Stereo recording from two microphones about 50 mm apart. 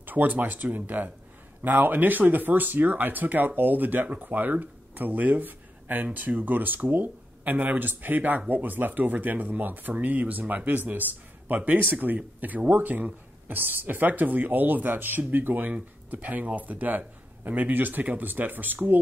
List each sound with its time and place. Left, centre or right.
0.0 s speech: right